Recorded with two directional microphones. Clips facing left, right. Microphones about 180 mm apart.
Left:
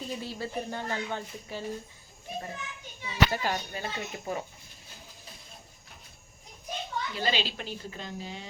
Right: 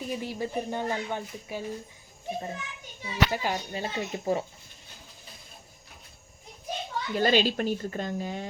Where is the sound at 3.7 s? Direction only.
30° right (ahead or behind).